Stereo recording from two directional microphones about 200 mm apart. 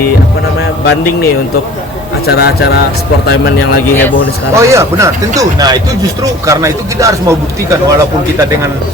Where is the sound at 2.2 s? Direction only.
55° left (ahead or behind).